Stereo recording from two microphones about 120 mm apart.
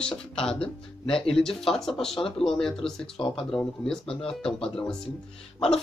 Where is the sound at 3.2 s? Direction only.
45° left (ahead or behind).